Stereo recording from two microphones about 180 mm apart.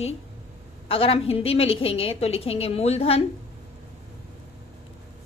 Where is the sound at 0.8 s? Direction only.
30° left (ahead or behind).